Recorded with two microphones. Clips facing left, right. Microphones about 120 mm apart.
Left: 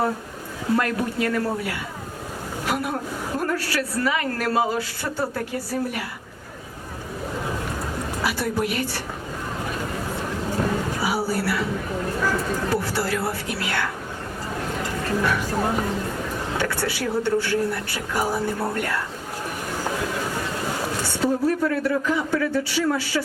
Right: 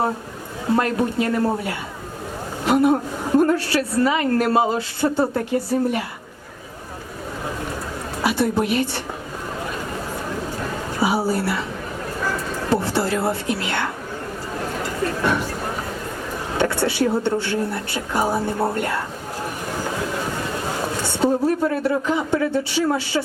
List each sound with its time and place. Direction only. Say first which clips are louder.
0.8 s a woman's voice: right 5 dB; 25° right (ahead or behind)
8.2 s a woman's voice: right 5 dB; 25° right (ahead or behind)
11.0 s a woman's voice: right 7 dB; 25° right (ahead or behind)
12.7 s a woman's voice: right 7 dB; 25° right (ahead or behind)
16.6 s a woman's voice: right 7 dB; 25° right (ahead or behind)
21.1 s a woman's voice: right 3 dB; 25° right (ahead or behind)